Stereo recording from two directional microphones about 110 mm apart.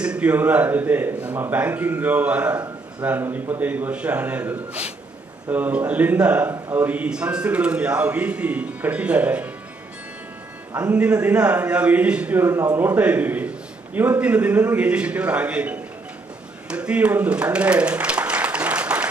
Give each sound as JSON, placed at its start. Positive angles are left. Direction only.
{"t": 0.0, "sound": "a man's voice", "side_deg": -10}
{"t": 10.7, "sound": "a man's voice", "side_deg": -10}
{"t": 12.4, "sound": "speech", "side_deg": -30}
{"t": 12.8, "sound": "a man's voice", "side_deg": -15}
{"t": 16.6, "sound": "applause", "side_deg": -10}